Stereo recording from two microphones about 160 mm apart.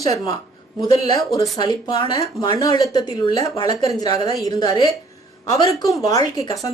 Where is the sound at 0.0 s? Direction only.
20° left (ahead or behind).